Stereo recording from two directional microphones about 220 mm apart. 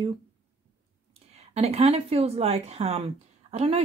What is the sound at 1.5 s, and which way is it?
Speech, 30° right (ahead or behind).